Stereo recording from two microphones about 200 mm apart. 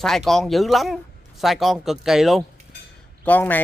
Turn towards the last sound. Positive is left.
turn(degrees=10)  # may be behind; listen again after turning